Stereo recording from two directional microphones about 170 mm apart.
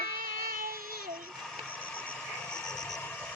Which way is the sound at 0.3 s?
55° right (ahead or behind).